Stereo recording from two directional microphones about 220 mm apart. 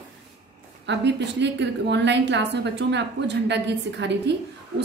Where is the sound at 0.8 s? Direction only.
50° right (ahead or behind).